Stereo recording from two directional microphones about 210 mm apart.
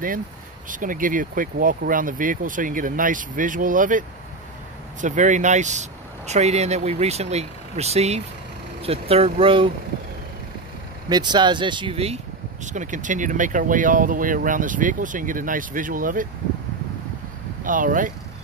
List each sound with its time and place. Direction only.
0.7 s speech: 40° right (ahead or behind)
5.0 s speech: 35° right (ahead or behind)
11.1 s speech: 20° right (ahead or behind); by 16.3 s 40° right (ahead or behind)
17.6 s speech: 40° right (ahead or behind)